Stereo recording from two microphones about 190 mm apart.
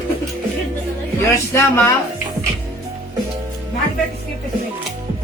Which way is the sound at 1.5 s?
15° left (ahead or behind).